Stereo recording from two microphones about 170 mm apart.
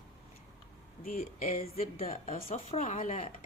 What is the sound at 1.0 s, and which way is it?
A woman's voice, 55° left (ahead or behind).